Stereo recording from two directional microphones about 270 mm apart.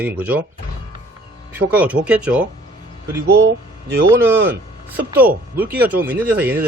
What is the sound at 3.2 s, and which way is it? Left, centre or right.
Speech, right.